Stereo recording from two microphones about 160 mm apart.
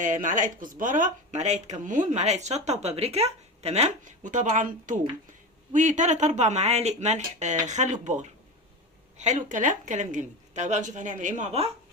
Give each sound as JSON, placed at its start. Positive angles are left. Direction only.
{"t": 0.0, "sound": "speech", "side_deg": -55}